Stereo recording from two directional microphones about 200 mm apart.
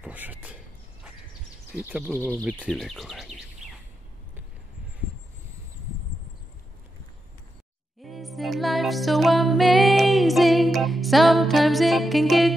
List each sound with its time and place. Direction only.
0.0 s a sound: 10° right (ahead or behind)
1.8 s speech: 10° right (ahead or behind)
2.3 s speech: 5° left (ahead or behind)
3.6 s bird: centre (ahead or behind)
8.0 s music: centre (ahead or behind)